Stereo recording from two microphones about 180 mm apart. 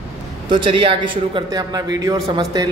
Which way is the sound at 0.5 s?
25° right (ahead or behind).